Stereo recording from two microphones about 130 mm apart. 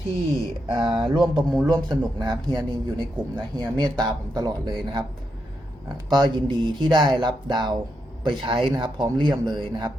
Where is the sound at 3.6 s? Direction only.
30° right (ahead or behind).